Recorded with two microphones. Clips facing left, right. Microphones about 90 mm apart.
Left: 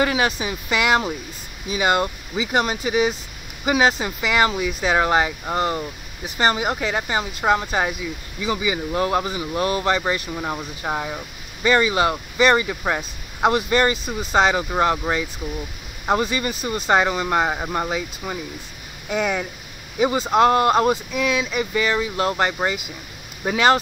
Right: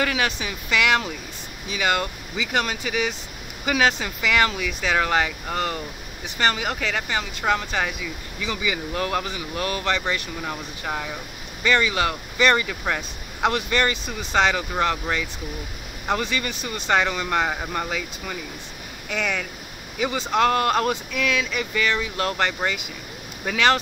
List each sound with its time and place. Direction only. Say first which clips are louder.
0.0 s speech: left 4 dB; 25° left (ahead or behind)
10.3 s speech: left 4 dB; 20° left (ahead or behind)
13.5 s speech: left 4 dB; 30° left (ahead or behind)
16.3 s speech: left 4 dB; 30° left (ahead or behind)